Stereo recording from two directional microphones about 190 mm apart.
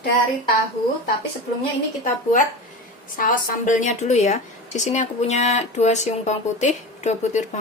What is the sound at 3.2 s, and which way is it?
A woman's voice, 45° left (ahead or behind).